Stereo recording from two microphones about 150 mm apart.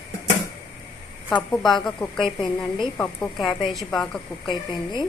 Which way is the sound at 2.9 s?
5° left (ahead or behind).